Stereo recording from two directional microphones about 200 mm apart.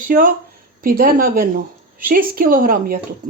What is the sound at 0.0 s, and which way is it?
A woman's voice, 45° right (ahead or behind).